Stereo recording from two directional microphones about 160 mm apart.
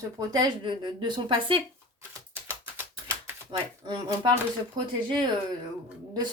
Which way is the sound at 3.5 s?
30° right (ahead or behind).